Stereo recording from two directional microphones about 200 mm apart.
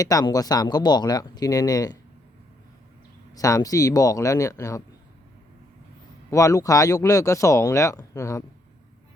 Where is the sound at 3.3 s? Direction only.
15° left (ahead or behind).